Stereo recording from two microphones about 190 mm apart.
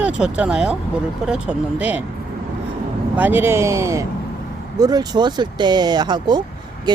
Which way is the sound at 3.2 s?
10° right (ahead or behind).